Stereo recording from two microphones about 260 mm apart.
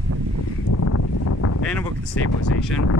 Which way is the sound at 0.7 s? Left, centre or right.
Left.